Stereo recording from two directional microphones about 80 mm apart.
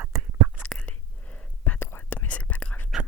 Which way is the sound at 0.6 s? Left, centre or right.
Centre.